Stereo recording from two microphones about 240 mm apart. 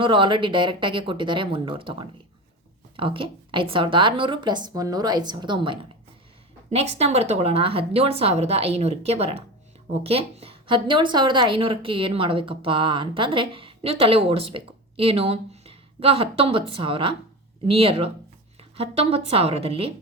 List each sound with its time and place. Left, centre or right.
0.0 s a woman's voice: right